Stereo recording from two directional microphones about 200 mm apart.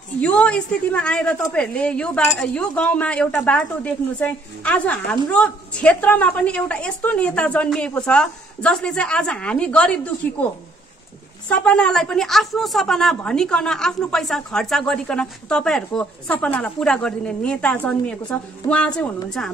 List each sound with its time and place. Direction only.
0.2 s a woman's voice: 5° left (ahead or behind)
18.6 s a woman's voice: 15° left (ahead or behind)